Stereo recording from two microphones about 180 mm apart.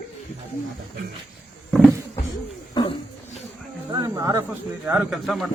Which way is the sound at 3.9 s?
20° right (ahead or behind).